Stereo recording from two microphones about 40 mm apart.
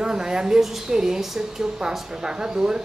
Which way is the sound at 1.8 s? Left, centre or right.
Centre.